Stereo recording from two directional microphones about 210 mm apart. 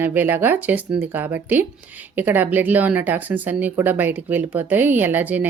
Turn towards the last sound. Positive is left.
turn(degrees=-10)  # may be behind; listen again after turning